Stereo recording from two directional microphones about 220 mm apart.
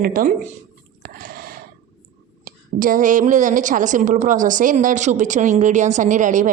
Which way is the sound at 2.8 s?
40° right (ahead or behind).